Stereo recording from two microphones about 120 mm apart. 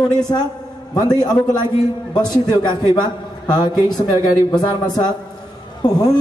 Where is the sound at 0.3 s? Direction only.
35° left (ahead or behind).